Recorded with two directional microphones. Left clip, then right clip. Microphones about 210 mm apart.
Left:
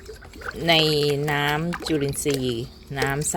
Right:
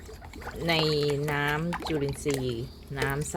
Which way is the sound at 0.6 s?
45° left (ahead or behind).